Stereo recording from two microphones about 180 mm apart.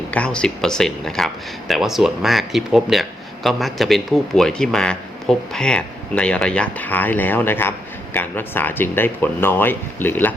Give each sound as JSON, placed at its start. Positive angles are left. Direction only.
{"t": 0.1, "sound": "speech", "side_deg": 5}